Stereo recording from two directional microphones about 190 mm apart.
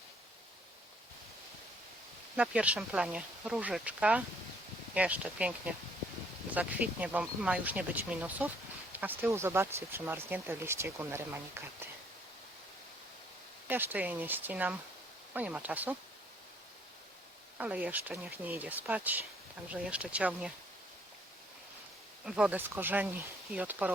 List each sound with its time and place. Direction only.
2.3 s speech: 5° right (ahead or behind)
13.7 s speech: 10° right (ahead or behind)
17.6 s speech: 5° right (ahead or behind)
22.2 s speech: 5° right (ahead or behind)